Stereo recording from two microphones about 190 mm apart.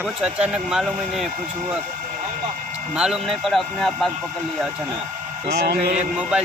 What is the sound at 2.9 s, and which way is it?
Speech, 5° right (ahead or behind).